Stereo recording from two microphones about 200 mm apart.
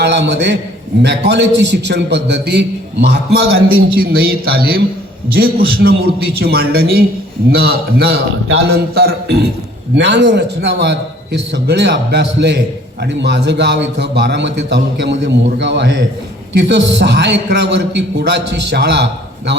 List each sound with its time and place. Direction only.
0.0 s a man's voice: 60° right (ahead or behind)